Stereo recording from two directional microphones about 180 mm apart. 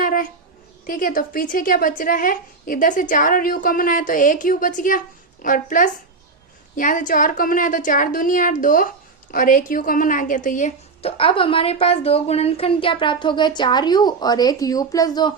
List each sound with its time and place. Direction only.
0.0 s a sound: 50° left (ahead or behind)
0.9 s a woman's voice: 50° left (ahead or behind)
11.0 s a woman's voice: 30° left (ahead or behind)